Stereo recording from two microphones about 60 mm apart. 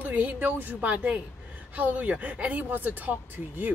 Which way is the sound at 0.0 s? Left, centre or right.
Right.